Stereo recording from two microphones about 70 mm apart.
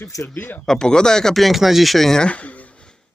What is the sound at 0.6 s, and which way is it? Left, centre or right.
Speech, centre.